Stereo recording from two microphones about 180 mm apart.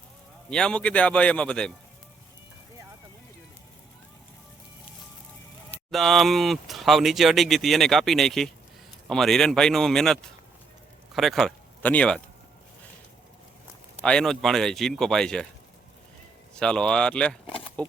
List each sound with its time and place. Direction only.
0.5 s speech: 5° left (ahead or behind)
5.9 s speech: centre (ahead or behind)
14.0 s speech: 5° left (ahead or behind)
16.6 s speech: 5° left (ahead or behind)
17.4 s a sound: 30° left (ahead or behind)